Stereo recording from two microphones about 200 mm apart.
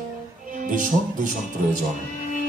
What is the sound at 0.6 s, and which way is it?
A man's voice, 40° right (ahead or behind).